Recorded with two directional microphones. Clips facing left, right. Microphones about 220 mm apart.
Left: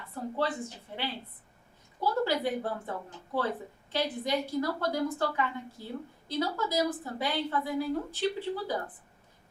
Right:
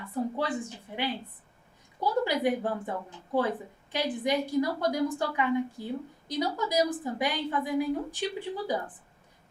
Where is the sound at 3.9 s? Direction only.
15° right (ahead or behind).